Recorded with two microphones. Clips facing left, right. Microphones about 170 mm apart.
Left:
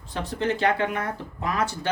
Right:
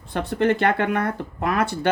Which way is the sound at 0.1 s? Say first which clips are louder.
Right 6 dB; 60° right (ahead or behind).